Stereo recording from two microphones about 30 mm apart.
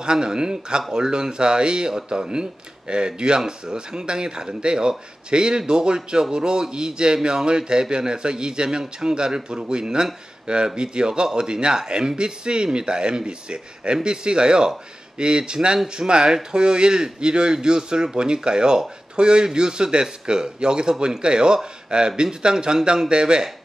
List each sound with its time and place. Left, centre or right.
0.0 s a man's voice: right